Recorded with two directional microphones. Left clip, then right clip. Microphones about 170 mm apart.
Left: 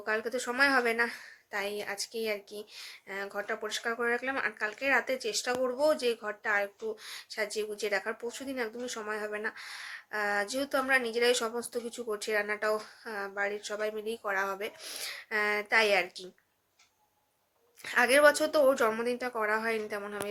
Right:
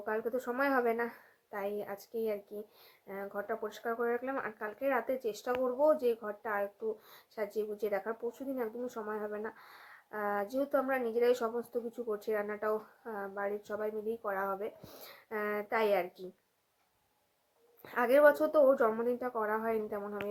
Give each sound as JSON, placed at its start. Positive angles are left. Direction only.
{"t": 0.0, "sound": "speech", "side_deg": 0}
{"t": 9.0, "sound": "speech", "side_deg": 10}
{"t": 13.1, "sound": "a woman's voice", "side_deg": 15}
{"t": 13.4, "sound": "speech", "side_deg": -5}
{"t": 14.2, "sound": "a woman's voice", "side_deg": 10}
{"t": 14.6, "sound": "speech", "side_deg": -5}
{"t": 17.8, "sound": "speech", "side_deg": 0}
{"t": 18.6, "sound": "a woman's voice", "side_deg": 15}